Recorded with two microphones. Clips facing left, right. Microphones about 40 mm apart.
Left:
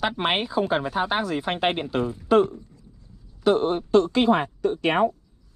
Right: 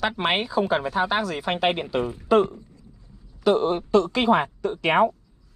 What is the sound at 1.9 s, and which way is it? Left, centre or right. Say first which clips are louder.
Speech: even; right.